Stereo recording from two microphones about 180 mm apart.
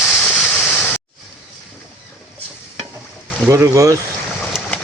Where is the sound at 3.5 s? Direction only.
15° right (ahead or behind).